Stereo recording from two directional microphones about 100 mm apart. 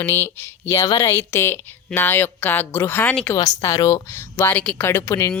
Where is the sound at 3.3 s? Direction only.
35° left (ahead or behind).